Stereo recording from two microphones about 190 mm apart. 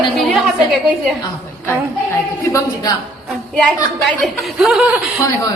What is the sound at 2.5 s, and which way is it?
Speech, 15° left (ahead or behind).